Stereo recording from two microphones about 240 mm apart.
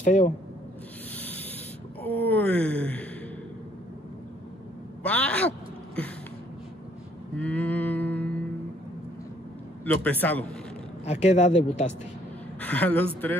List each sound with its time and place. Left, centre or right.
0.0 s speech: left
1.1 s sanding: centre
2.0 s speech: centre
5.0 s speech: centre
7.3 s music: centre
10.0 s a man's voice: centre
11.1 s speech: left
12.5 s a woman's voice: centre